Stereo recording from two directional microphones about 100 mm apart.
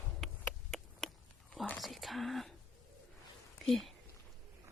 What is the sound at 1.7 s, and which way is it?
Whispering, centre (ahead or behind).